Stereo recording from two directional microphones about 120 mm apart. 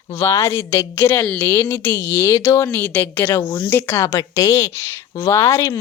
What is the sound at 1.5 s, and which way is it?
Speech, 20° left (ahead or behind).